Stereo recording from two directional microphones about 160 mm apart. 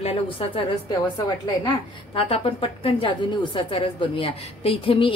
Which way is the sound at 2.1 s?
35° left (ahead or behind).